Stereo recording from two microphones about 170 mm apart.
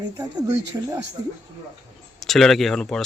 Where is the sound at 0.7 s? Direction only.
20° right (ahead or behind).